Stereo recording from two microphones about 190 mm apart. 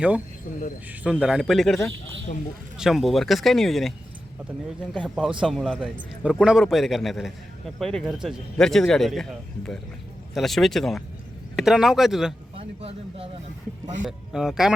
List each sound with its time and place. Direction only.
1.0 s a man's voice: 5° right (ahead or behind)
10.3 s a man's voice: centre (ahead or behind)
12.5 s speech: 30° right (ahead or behind)
14.0 s a man's voice: 5° right (ahead or behind)